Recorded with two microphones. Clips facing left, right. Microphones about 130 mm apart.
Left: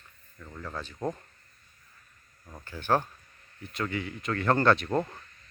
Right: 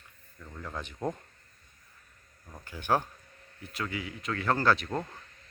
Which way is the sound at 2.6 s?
15° right (ahead or behind).